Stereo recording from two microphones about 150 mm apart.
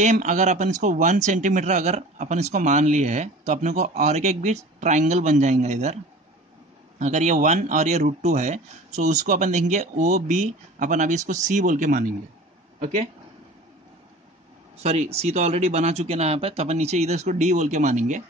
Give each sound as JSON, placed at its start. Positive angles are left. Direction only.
{"t": 0.0, "sound": "speech", "side_deg": -55}
{"t": 7.0, "sound": "speech", "side_deg": -50}
{"t": 14.8, "sound": "speech", "side_deg": -45}